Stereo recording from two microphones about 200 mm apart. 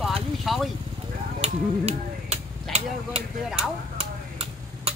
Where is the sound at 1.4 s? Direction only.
30° right (ahead or behind).